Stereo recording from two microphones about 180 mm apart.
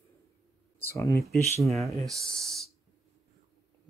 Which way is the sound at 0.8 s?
15° left (ahead or behind).